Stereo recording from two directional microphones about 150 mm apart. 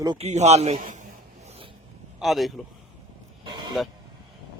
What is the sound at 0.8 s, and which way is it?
Speech, 55° right (ahead or behind).